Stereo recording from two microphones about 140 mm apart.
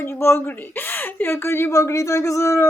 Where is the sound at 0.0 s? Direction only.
15° left (ahead or behind).